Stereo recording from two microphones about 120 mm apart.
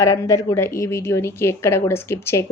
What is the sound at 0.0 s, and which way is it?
A woman's voice, 25° left (ahead or behind).